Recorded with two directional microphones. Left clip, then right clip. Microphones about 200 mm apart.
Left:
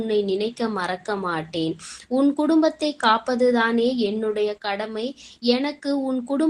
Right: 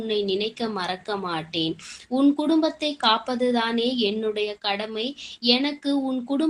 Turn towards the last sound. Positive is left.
turn(degrees=25)  # may be behind; listen again after turning